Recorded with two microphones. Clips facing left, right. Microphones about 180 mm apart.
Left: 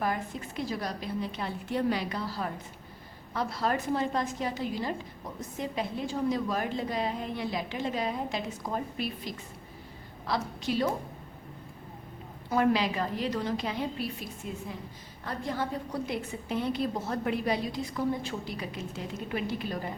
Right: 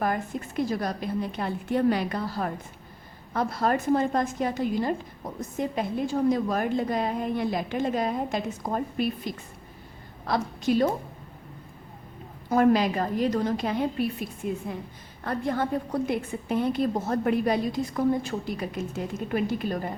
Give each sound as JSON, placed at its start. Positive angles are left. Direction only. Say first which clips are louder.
{"t": 0.0, "sound": "a woman's voice", "louder": "right 4 dB", "side_deg": -50}
{"t": 12.5, "sound": "a woman's voice", "louder": "right 5 dB", "side_deg": -45}